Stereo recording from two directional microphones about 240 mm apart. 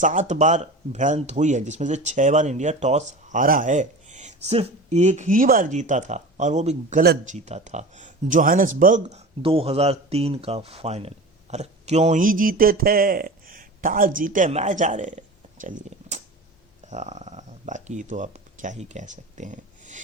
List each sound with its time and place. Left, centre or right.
0.0 s speech: right
7.0 s speech: right
7.3 s speech: right
15.6 s a sound: right
16.8 s speech: right